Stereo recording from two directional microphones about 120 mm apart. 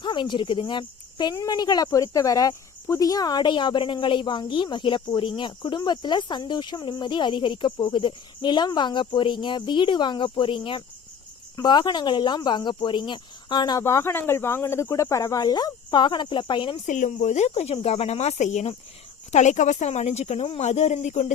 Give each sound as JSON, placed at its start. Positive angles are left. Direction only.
{"t": 0.0, "sound": "insect", "side_deg": 40}
{"t": 1.4, "sound": "speech", "side_deg": 35}
{"t": 13.8, "sound": "speech", "side_deg": 20}
{"t": 16.8, "sound": "speech", "side_deg": 90}